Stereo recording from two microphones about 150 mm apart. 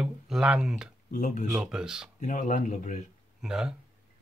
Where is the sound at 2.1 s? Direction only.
55° left (ahead or behind).